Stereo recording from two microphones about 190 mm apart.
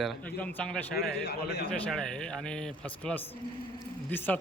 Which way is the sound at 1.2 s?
60° left (ahead or behind).